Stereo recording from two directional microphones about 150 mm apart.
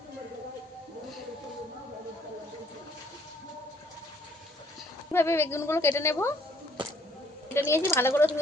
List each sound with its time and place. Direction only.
5.1 s a woman's voice: 15° left (ahead or behind)
7.5 s a woman's voice: 15° left (ahead or behind)